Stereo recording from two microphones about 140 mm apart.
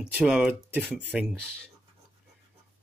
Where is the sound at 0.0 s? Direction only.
10° right (ahead or behind).